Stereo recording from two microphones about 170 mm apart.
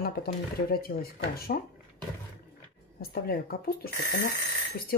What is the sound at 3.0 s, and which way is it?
Speech, 60° left (ahead or behind).